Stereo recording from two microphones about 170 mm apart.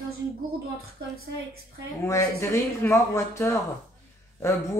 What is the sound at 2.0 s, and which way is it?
Speech, 15° left (ahead or behind).